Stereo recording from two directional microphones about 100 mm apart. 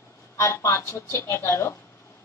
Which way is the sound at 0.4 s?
30° left (ahead or behind).